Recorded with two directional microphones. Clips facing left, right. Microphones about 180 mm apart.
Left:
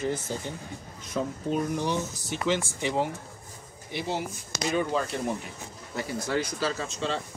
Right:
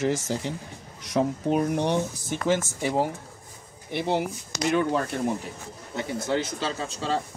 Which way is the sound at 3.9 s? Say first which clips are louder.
Right 5 dB; 55° right (ahead or behind).